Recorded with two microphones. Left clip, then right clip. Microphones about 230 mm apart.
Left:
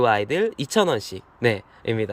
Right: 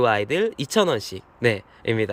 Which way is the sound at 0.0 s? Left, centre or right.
Centre.